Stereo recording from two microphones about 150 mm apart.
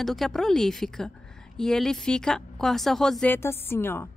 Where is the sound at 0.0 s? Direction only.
Centre (ahead or behind).